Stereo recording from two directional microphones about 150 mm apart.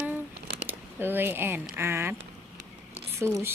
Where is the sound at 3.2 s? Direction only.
15° right (ahead or behind).